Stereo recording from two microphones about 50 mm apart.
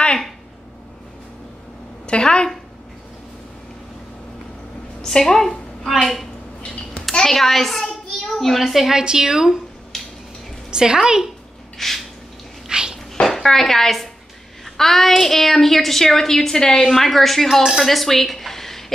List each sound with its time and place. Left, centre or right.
2.0 s a woman's voice: centre
5.0 s a woman's voice: centre
7.1 s a child's voice: centre
8.9 s a woman's voice: centre
9.9 s a sound: centre
10.7 s a woman's voice: centre
11.8 s a woman's voice: centre
12.6 s a sound: centre
13.1 s dishes: centre
14.6 s a woman's voice: centre